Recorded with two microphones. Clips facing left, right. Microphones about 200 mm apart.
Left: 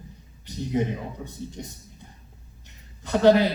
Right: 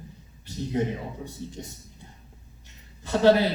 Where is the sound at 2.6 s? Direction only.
15° left (ahead or behind).